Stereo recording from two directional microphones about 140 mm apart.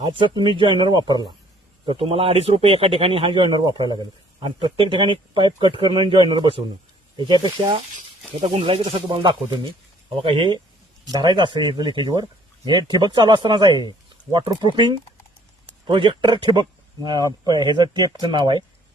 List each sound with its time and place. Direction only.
0.0 s a man's voice: 35° right (ahead or behind)
1.9 s a man's voice: 40° right (ahead or behind)
8.4 s a man's voice: 40° right (ahead or behind)